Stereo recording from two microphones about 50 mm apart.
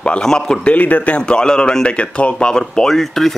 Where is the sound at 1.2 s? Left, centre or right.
Centre.